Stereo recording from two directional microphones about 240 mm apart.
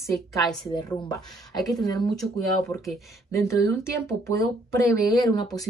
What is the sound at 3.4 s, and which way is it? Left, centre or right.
Speech, centre.